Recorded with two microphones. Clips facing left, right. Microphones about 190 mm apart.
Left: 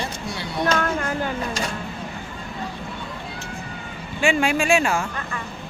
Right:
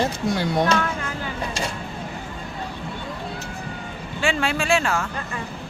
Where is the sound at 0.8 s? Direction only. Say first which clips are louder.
Left 3 dB; 50° left (ahead or behind).